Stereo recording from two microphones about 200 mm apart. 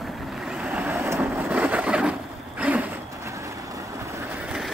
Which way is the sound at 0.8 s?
10° right (ahead or behind).